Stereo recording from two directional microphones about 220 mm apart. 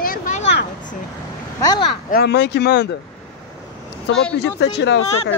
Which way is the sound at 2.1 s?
45° left (ahead or behind).